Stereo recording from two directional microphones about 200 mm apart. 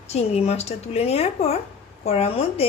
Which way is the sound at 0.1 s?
30° left (ahead or behind).